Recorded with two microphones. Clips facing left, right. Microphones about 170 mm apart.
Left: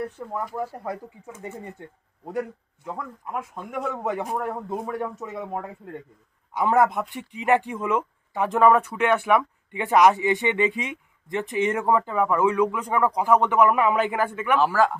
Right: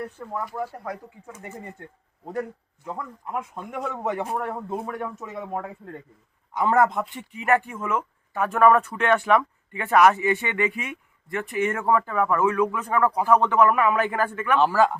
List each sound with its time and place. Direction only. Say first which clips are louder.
0.2 s speech: left 2 dB; 10° left (ahead or behind)
1.3 s speech: left 3 dB; 25° left (ahead or behind)
2.2 s a man's voice: left 1 dB; 5° left (ahead or behind)
4.9 s speech: left 2 dB; 10° left (ahead or behind)
6.5 s speech: even; 10° left (ahead or behind)